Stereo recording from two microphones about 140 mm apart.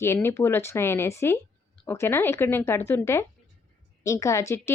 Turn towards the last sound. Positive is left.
turn(degrees=20)  # may be behind; listen again after turning